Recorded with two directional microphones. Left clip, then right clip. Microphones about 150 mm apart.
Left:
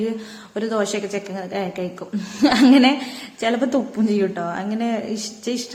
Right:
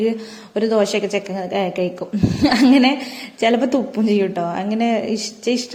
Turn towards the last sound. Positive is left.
turn(degrees=-25)  # may be behind; listen again after turning